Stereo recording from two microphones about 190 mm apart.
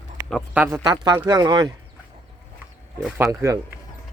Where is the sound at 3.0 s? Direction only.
10° right (ahead or behind).